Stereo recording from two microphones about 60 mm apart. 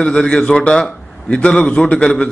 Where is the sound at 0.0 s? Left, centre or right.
Centre.